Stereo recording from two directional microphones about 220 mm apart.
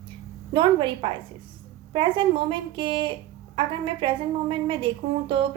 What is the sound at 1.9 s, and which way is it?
A woman's voice, 20° right (ahead or behind).